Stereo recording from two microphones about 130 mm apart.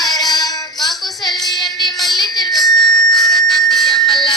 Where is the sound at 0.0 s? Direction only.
30° left (ahead or behind).